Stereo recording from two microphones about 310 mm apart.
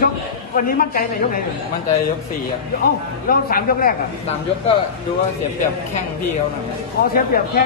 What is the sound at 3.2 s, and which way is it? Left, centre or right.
Speech, left.